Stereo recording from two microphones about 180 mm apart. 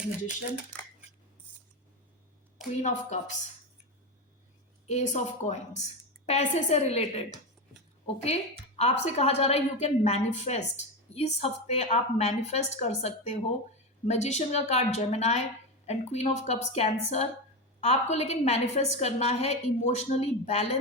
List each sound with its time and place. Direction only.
2.8 s a woman's voice: 40° left (ahead or behind)
4.9 s a woman's voice: 40° left (ahead or behind)